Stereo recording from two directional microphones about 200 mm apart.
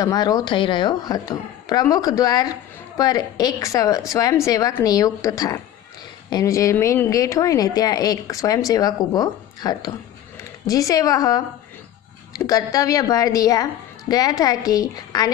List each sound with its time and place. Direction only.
0.0 s a woman's voice: 20° left (ahead or behind)